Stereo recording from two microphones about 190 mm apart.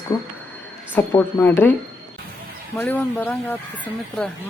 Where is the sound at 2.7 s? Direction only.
10° left (ahead or behind).